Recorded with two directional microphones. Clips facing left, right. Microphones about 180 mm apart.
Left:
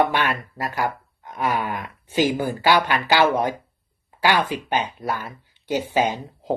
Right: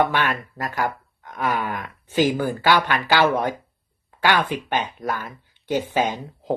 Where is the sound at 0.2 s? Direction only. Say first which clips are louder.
Even; 10° left (ahead or behind).